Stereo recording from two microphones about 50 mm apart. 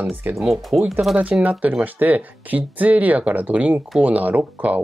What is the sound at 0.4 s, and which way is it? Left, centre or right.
Speech, centre.